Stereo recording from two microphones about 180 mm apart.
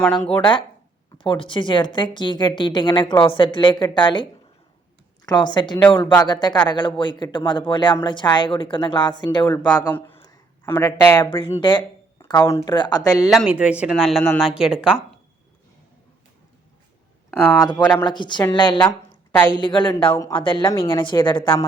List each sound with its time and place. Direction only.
0.0 s speech: 5° left (ahead or behind)
1.2 s a woman's voice: 30° left (ahead or behind)
10.7 s a woman's voice: 15° left (ahead or behind)
12.2 s a woman's voice: 15° left (ahead or behind)
13.3 s speech: 5° right (ahead or behind)
17.4 s a woman's voice: 20° left (ahead or behind)